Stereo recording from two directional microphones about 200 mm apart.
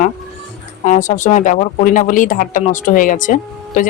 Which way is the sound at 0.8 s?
40° left (ahead or behind).